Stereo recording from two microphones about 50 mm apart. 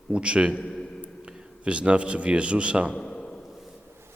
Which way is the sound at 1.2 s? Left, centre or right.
Centre.